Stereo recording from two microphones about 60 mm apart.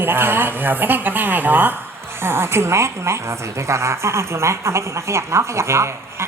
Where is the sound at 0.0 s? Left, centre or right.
Right.